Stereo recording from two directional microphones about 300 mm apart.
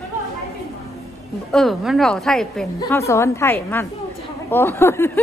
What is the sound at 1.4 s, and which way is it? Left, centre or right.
A woman's voice, centre.